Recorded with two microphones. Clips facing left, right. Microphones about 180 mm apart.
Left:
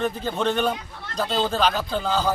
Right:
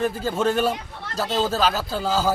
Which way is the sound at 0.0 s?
5° right (ahead or behind).